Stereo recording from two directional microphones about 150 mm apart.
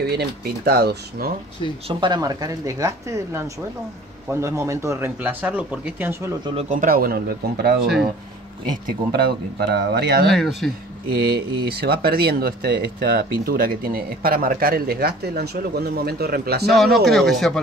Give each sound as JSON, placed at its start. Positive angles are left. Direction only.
{"t": 0.0, "sound": "speech", "side_deg": -90}
{"t": 1.9, "sound": "speech", "side_deg": -30}
{"t": 6.7, "sound": "speech", "side_deg": -70}
{"t": 9.1, "sound": "speech", "side_deg": -90}
{"t": 10.2, "sound": "speech", "side_deg": 0}
{"t": 11.1, "sound": "speech", "side_deg": -90}
{"t": 16.7, "sound": "speech", "side_deg": 0}